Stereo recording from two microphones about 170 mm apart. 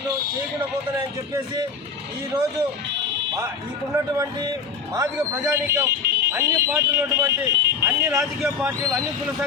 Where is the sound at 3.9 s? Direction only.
20° right (ahead or behind).